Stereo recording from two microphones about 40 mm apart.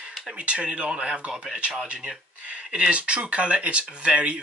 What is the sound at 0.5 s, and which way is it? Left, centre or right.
Speech, right.